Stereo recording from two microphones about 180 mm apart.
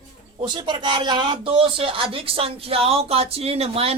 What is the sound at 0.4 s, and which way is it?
Speech, 25° right (ahead or behind).